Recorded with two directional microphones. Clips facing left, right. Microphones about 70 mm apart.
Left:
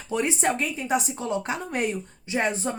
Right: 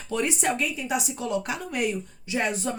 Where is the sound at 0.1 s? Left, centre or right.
Left.